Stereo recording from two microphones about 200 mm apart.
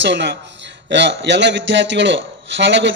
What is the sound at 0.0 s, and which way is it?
A man's voice, 60° right (ahead or behind).